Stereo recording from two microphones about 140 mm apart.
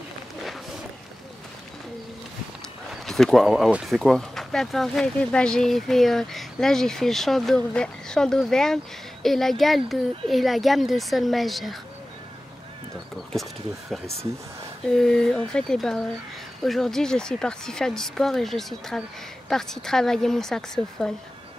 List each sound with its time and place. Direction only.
2.9 s speech: centre (ahead or behind)
13.3 s speech: centre (ahead or behind)